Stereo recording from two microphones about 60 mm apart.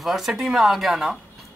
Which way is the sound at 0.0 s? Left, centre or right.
Centre.